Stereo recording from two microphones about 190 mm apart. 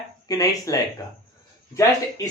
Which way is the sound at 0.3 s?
20° left (ahead or behind).